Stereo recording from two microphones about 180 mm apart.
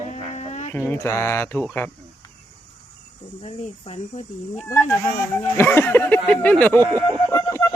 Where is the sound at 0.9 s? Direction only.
15° left (ahead or behind).